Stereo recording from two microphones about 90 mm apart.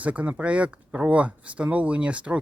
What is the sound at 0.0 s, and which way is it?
Speech, 15° right (ahead or behind).